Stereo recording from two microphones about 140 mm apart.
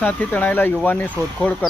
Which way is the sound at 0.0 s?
10° left (ahead or behind).